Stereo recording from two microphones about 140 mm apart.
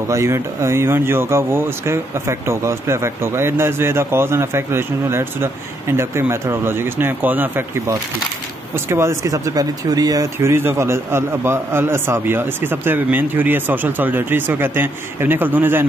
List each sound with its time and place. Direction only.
0.1 s speech: 20° right (ahead or behind)